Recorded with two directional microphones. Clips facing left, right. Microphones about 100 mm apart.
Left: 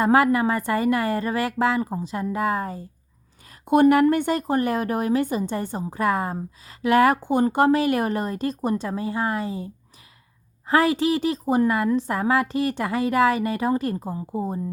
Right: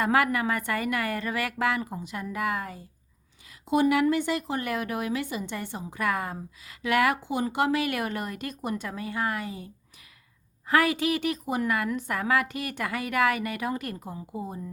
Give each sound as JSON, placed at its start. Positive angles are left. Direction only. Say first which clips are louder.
{"t": 0.0, "sound": "a woman's voice", "louder": "left 6 dB", "side_deg": 30}
{"t": 3.5, "sound": "a woman's voice", "louder": "left 7 dB", "side_deg": 50}